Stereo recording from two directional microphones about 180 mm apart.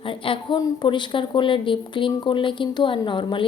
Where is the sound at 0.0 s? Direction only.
30° left (ahead or behind).